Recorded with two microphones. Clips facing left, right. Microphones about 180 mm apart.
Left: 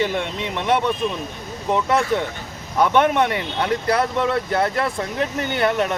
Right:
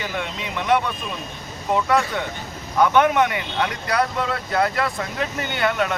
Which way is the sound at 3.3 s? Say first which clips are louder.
Left 3 dB; 30° left (ahead or behind).